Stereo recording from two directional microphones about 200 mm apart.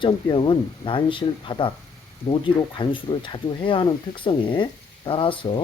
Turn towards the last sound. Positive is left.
turn(degrees=25)  # may be behind; listen again after turning